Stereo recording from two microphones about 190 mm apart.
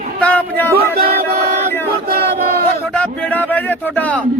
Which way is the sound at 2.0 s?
55° right (ahead or behind).